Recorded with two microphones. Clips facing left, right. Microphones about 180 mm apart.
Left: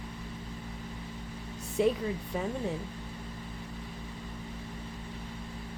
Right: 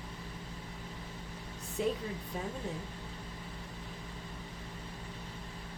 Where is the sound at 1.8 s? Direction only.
75° left (ahead or behind).